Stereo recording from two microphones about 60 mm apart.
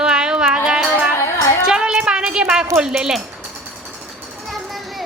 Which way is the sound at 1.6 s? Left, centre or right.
Centre.